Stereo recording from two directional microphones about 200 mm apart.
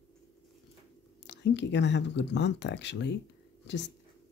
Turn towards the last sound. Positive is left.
turn(degrees=60)  # may be behind; listen again after turning